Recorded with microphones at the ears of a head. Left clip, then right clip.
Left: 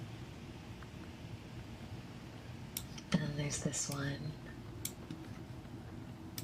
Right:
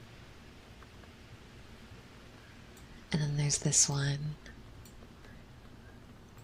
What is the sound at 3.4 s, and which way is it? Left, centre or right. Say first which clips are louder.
Speech: right 10 dB; right.